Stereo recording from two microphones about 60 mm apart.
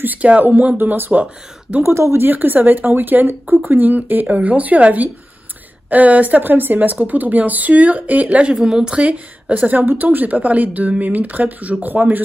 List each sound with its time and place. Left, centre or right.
0.0 s speech: right
1.8 s speech: right
2.2 s speech: right